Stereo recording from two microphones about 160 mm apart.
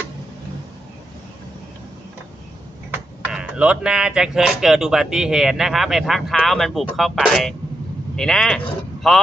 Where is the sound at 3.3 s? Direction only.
5° right (ahead or behind).